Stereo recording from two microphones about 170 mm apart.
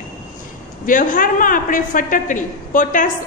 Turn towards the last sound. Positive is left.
turn(degrees=50)  # may be behind; listen again after turning